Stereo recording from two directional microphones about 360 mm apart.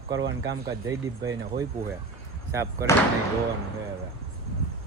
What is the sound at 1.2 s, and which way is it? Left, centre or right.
Speech, centre.